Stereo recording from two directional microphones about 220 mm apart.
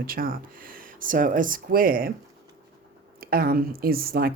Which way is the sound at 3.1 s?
40° right (ahead or behind).